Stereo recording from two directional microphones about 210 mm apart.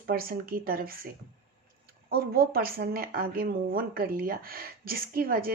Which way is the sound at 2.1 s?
45° right (ahead or behind).